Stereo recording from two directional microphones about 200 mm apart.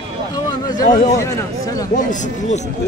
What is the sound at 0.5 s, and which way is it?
Speech, 20° left (ahead or behind).